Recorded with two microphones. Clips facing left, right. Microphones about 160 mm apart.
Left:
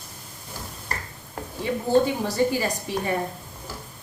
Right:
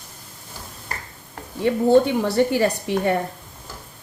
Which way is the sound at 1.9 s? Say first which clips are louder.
Right 4 dB; 70° right (ahead or behind).